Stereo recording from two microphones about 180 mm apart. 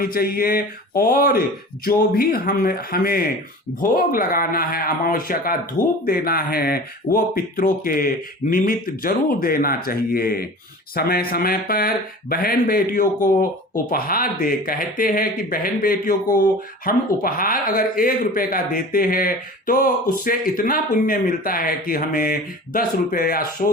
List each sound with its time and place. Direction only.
0.0 s speech: 55° left (ahead or behind)